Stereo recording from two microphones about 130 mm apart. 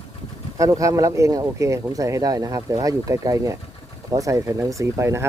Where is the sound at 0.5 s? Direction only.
25° right (ahead or behind).